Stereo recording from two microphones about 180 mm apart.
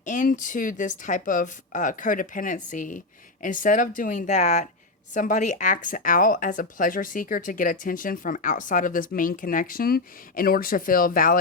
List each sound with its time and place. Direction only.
0.0 s speech: 45° left (ahead or behind)